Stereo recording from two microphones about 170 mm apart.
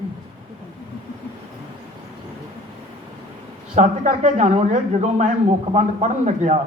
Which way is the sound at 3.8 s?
45° right (ahead or behind).